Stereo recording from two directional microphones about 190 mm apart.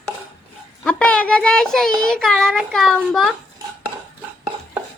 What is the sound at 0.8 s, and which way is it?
Speech, 5° left (ahead or behind).